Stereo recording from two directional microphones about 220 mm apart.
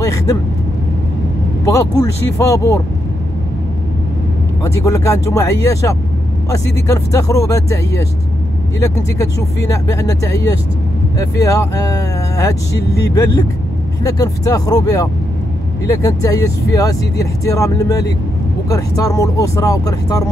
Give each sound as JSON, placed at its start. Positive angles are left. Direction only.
{"t": 0.0, "sound": "vehicle", "side_deg": 15}
{"t": 1.7, "sound": "speech", "side_deg": 15}
{"t": 4.6, "sound": "speech", "side_deg": 15}